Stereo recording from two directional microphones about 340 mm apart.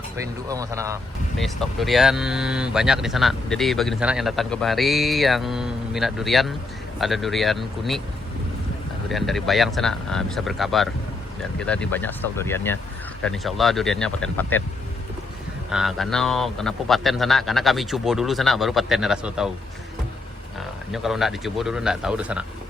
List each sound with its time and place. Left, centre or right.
0.4 s speech: centre
9.0 s speech: centre
15.7 s speech: centre
20.9 s speech: centre